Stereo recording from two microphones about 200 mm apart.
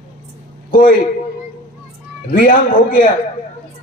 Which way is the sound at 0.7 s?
40° left (ahead or behind).